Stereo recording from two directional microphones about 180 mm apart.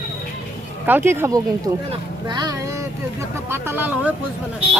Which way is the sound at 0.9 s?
10° right (ahead or behind).